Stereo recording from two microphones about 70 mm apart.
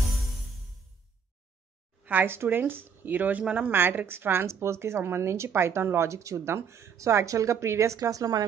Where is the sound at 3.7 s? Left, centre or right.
Right.